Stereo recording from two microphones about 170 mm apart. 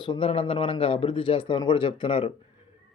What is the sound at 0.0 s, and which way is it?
Speech, 30° left (ahead or behind).